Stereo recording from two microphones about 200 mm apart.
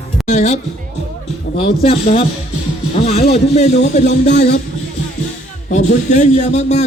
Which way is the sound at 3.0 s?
30° left (ahead or behind).